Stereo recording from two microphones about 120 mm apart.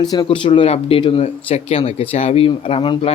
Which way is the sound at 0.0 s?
35° left (ahead or behind).